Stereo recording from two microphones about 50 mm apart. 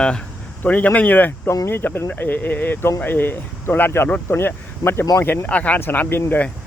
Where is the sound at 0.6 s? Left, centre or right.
Left.